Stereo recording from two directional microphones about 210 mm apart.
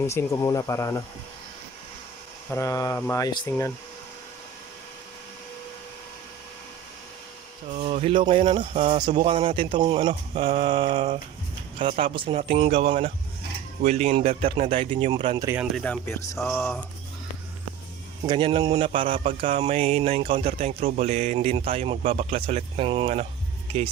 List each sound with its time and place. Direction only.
0.1 s speech: 15° left (ahead or behind)
2.5 s speech: 15° left (ahead or behind)
7.8 s speech: 30° right (ahead or behind)
15.7 s speech: 5° left (ahead or behind)
18.3 s speech: 25° right (ahead or behind)
20.8 s speech: 40° right (ahead or behind)